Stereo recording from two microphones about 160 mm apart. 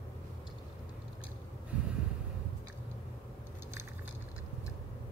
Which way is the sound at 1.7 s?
10° right (ahead or behind).